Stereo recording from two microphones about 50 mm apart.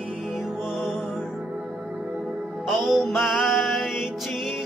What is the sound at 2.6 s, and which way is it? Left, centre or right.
Music, centre.